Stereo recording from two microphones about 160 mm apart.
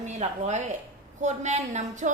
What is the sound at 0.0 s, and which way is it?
A woman's voice, 45° right (ahead or behind).